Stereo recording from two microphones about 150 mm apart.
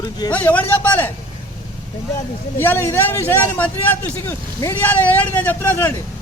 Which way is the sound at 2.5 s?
15° left (ahead or behind).